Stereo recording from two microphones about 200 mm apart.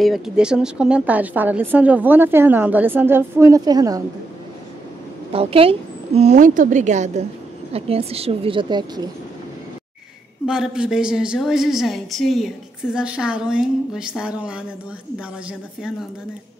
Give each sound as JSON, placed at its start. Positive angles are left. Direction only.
{"t": 0.0, "sound": "a woman's voice", "side_deg": 0}
{"t": 5.3, "sound": "a woman's voice", "side_deg": -30}
{"t": 10.4, "sound": "a woman's voice", "side_deg": -5}